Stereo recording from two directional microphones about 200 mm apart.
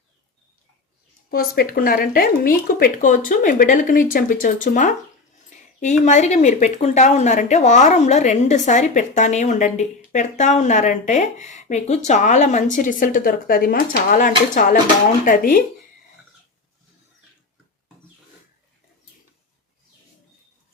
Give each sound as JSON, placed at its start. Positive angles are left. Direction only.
{"t": 1.3, "sound": "speech", "side_deg": 50}
{"t": 6.0, "sound": "a woman's voice", "side_deg": 40}